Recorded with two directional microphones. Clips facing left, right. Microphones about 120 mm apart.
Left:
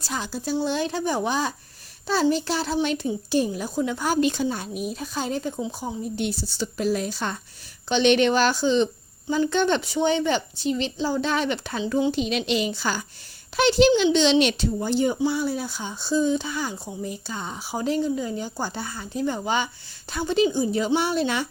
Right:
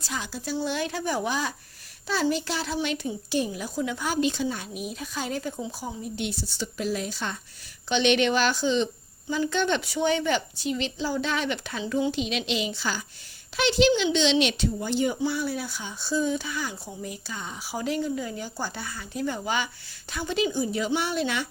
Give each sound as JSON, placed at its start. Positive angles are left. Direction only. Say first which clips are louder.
{"t": 0.0, "sound": "a woman's voice", "louder": "left 4 dB", "side_deg": 35}
{"t": 4.2, "sound": "a woman's voice", "louder": "left 2 dB", "side_deg": 50}
{"t": 4.4, "sound": "a woman's voice", "louder": "left 4 dB", "side_deg": 40}
{"t": 6.1, "sound": "a woman's voice", "louder": "left 4 dB", "side_deg": 40}
{"t": 12.1, "sound": "a woman's voice", "louder": "left 4 dB", "side_deg": 45}